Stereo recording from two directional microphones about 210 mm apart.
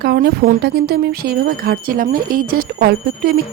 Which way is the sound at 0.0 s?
45° right (ahead or behind).